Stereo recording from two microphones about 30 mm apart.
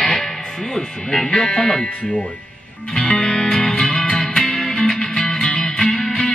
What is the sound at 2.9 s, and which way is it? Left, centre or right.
Music, left.